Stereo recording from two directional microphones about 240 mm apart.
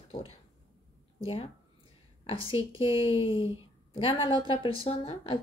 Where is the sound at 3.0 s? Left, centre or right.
Left.